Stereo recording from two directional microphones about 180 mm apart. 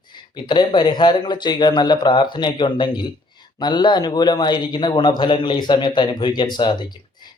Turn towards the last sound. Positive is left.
turn(degrees=25)  # may be behind; listen again after turning